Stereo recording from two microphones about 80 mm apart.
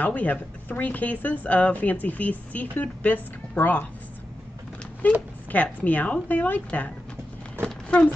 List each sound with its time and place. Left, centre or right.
0.0 s speech: centre
5.0 s speech: centre
7.6 s a sound: centre